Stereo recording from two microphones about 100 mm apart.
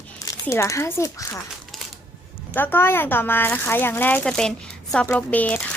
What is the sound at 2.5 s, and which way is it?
Speech, 20° left (ahead or behind).